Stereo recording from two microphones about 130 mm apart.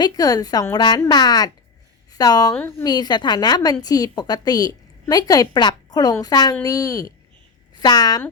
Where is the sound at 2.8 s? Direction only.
30° left (ahead or behind).